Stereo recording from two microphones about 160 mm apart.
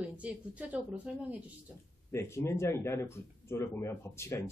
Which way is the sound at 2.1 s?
15° left (ahead or behind).